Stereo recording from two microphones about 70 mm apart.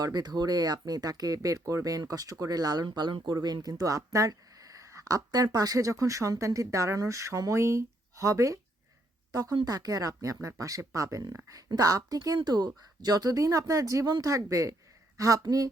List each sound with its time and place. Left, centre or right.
0.0 s a woman's voice: right
3.3 s a woman's voice: right